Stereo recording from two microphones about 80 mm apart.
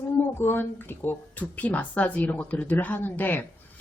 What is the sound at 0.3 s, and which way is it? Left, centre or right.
A woman's voice, left.